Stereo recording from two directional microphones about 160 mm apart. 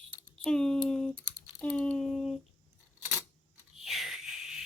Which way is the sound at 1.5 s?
5° left (ahead or behind).